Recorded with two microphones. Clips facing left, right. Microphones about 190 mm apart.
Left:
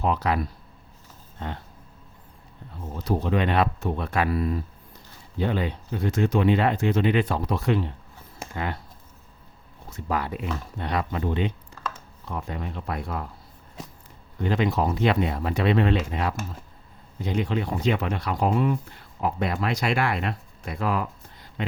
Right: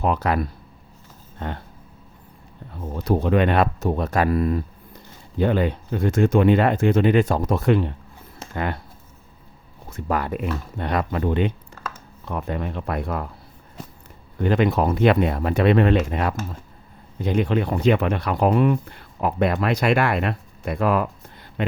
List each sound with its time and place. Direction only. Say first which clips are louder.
0.0 s speech: right 3 dB; 50° right (ahead or behind)
3.0 s speech: right 5 dB; 55° right (ahead or behind)
9.9 s speech: right 4 dB; 50° right (ahead or behind)
14.3 s speech: right 4 dB; 55° right (ahead or behind)